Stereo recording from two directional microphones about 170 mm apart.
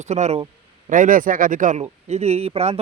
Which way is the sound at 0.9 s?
50° right (ahead or behind).